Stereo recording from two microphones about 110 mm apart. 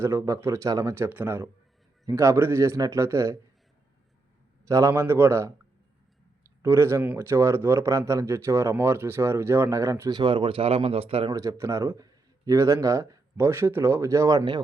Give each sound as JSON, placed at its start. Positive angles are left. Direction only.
{"t": 0.0, "sound": "speech", "side_deg": -25}
{"t": 4.7, "sound": "speech", "side_deg": -25}
{"t": 11.3, "sound": "speech", "side_deg": -30}